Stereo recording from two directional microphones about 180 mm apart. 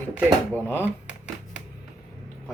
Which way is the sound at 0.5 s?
10° left (ahead or behind).